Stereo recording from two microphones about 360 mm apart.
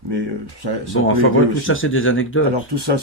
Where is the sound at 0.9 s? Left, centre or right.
Left.